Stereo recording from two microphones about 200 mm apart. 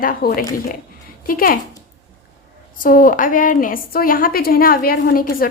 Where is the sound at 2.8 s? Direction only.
45° left (ahead or behind).